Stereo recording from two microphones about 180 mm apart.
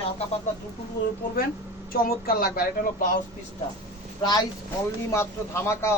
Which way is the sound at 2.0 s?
55° left (ahead or behind).